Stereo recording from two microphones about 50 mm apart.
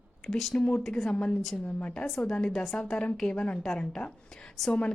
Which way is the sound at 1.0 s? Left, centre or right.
Left.